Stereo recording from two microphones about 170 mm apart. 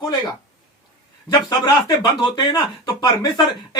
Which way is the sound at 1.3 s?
20° left (ahead or behind).